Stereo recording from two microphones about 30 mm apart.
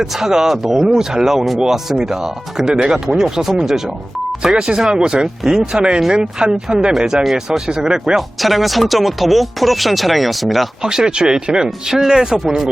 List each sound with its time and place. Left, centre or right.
0.0 s speech: centre
2.8 s speech: right
3.2 s speech: centre
8.4 s speech: centre
10.8 s speech: right